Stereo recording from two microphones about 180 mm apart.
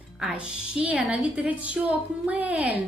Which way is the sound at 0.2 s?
5° right (ahead or behind).